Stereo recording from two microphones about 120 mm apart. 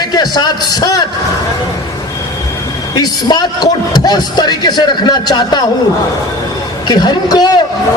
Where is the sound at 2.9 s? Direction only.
35° left (ahead or behind).